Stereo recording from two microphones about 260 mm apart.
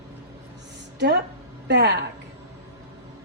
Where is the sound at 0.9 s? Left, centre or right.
Right.